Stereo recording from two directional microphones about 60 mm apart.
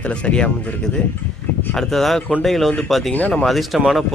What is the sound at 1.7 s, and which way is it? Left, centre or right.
Speech, centre.